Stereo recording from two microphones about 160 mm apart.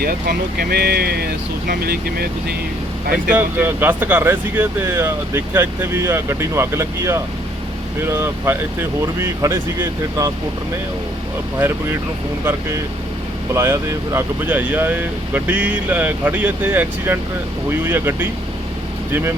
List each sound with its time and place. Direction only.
0.0 s speech: 70° right (ahead or behind)
3.2 s speech: 10° right (ahead or behind)
13.5 s speech: 20° right (ahead or behind)